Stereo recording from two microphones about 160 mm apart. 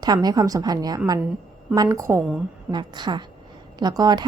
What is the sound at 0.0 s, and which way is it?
A woman's voice, 25° right (ahead or behind).